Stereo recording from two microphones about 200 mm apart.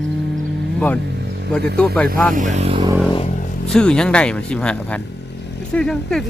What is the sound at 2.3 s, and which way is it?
Speech, 35° right (ahead or behind).